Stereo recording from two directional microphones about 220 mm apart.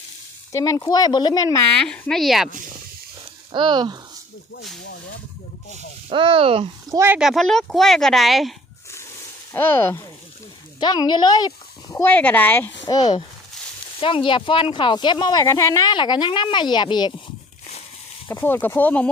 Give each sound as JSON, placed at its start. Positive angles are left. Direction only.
{"t": 0.5, "sound": "speech", "side_deg": 15}
{"t": 3.5, "sound": "speech", "side_deg": -20}
{"t": 5.7, "sound": "speech", "side_deg": -25}
{"t": 7.0, "sound": "a woman's voice", "side_deg": -5}
{"t": 18.3, "sound": "speech", "side_deg": 10}